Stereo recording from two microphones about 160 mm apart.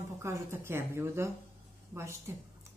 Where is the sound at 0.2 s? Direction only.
15° right (ahead or behind).